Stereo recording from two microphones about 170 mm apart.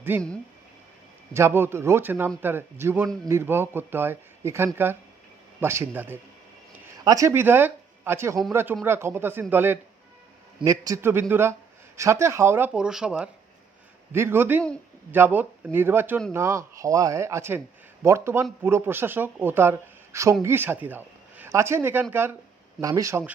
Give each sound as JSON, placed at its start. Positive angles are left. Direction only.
{"t": 0.1, "sound": "speech", "side_deg": -10}
{"t": 1.3, "sound": "speech", "side_deg": -15}